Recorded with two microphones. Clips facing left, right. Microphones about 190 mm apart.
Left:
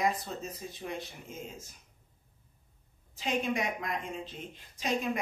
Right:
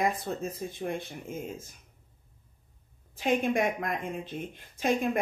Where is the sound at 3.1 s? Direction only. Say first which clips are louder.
Right 5 dB; 55° right (ahead or behind).